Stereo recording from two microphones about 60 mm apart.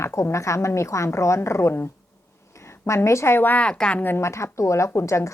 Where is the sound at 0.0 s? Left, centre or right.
Left.